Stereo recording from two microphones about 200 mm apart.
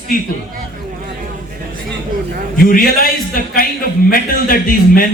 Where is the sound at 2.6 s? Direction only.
45° left (ahead or behind).